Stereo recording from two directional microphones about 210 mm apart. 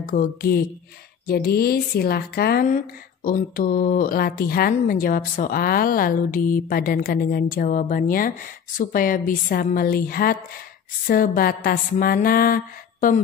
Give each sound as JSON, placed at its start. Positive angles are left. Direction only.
{"t": 0.0, "sound": "speech", "side_deg": 40}